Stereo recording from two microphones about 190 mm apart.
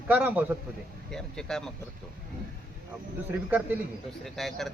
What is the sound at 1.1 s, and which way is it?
Speech, 5° left (ahead or behind).